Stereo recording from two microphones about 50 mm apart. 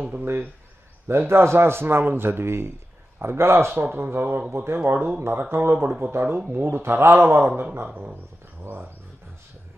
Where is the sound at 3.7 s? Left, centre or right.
Right.